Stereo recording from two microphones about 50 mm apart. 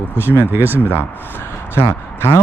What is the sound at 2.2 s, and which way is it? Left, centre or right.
Speech, left.